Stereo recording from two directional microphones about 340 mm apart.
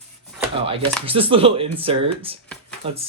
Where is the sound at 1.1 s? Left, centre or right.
Centre.